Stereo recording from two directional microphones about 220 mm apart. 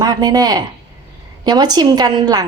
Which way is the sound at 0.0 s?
15° right (ahead or behind).